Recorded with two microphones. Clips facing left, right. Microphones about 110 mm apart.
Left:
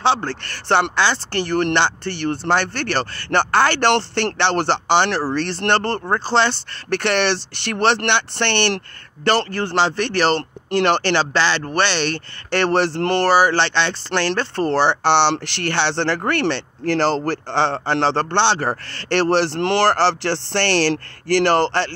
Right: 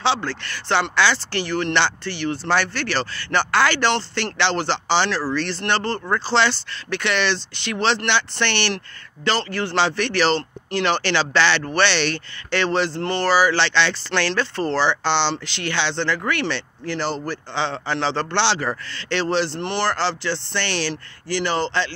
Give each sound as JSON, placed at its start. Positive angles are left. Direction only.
{"t": 0.7, "sound": "speech", "side_deg": 55}
{"t": 5.9, "sound": "speech", "side_deg": 30}
{"t": 6.2, "sound": "speech", "side_deg": 50}
{"t": 16.2, "sound": "speech", "side_deg": 50}
{"t": 16.9, "sound": "speech", "side_deg": 85}
{"t": 18.9, "sound": "speech", "side_deg": 60}
{"t": 19.3, "sound": "speech", "side_deg": 80}